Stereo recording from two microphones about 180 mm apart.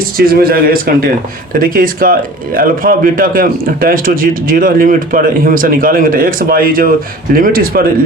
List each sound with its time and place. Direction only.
0.2 s a man's voice: 55° right (ahead or behind)